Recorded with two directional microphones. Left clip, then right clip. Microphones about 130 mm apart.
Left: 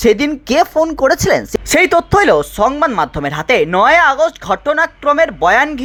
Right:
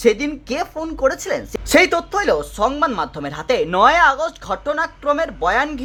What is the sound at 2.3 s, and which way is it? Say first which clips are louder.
Speech: left 6 dB; 30° left (ahead or behind).